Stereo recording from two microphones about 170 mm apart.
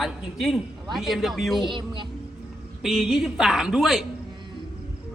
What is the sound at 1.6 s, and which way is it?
Speech, 25° right (ahead or behind).